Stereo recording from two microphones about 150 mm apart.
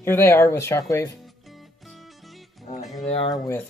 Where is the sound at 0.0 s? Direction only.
15° left (ahead or behind).